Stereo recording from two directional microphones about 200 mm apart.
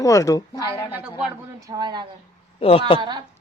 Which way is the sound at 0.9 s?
10° right (ahead or behind).